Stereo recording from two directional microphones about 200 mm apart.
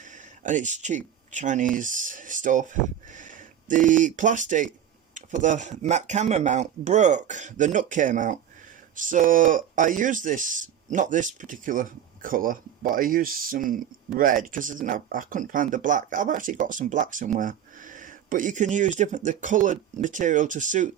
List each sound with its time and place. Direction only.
0.0 s speech: 40° right (ahead or behind)